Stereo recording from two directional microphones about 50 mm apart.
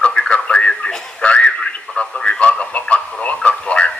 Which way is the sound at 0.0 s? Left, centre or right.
Left.